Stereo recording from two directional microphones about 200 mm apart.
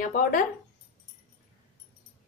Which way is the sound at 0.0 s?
45° left (ahead or behind).